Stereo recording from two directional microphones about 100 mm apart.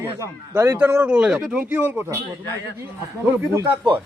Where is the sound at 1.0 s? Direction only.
10° right (ahead or behind).